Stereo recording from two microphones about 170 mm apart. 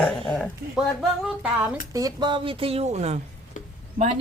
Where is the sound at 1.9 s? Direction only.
25° right (ahead or behind); by 3.2 s 40° right (ahead or behind).